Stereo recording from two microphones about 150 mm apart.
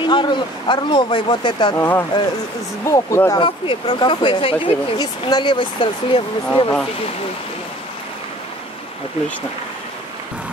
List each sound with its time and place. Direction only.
0.0 s speech: 30° left (ahead or behind)
1.8 s speech: 15° left (ahead or behind)
3.3 s speech: 35° left (ahead or behind)